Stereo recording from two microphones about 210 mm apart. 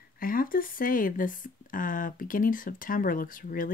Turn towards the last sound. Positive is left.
turn(degrees=40)  # may be behind; listen again after turning